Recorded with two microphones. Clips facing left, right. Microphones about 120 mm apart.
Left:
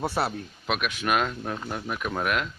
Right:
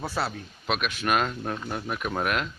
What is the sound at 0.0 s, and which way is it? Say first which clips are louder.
Speech: left 3 dB; 25° left (ahead or behind).